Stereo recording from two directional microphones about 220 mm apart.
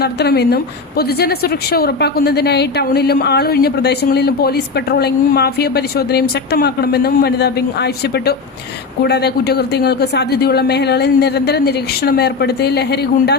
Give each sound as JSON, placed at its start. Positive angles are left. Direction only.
{"t": 0.0, "sound": "a woman's voice", "side_deg": 45}